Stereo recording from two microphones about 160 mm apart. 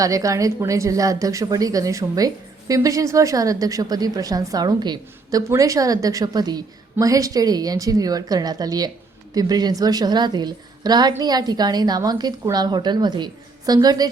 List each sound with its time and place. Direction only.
0.0 s speech: 20° right (ahead or behind)